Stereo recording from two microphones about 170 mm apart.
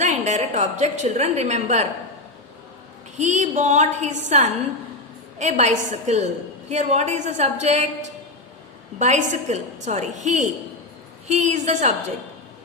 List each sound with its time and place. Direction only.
0.0 s a woman's voice: 45° right (ahead or behind)
3.2 s a woman's voice: 45° right (ahead or behind)
9.0 s a woman's voice: 45° right (ahead or behind)